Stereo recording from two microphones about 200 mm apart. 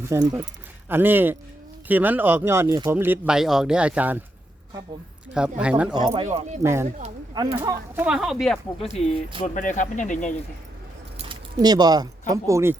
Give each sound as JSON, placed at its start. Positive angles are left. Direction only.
{"t": 0.0, "sound": "speech", "side_deg": -15}
{"t": 5.3, "sound": "speech", "side_deg": -5}
{"t": 5.9, "sound": "speech", "side_deg": -20}
{"t": 6.2, "sound": "speech", "side_deg": -35}
{"t": 6.6, "sound": "speech", "side_deg": -15}
{"t": 8.0, "sound": "speech", "side_deg": 0}
{"t": 9.6, "sound": "speech", "side_deg": 40}
{"t": 11.2, "sound": "a sound", "side_deg": -25}
{"t": 12.3, "sound": "speech", "side_deg": -15}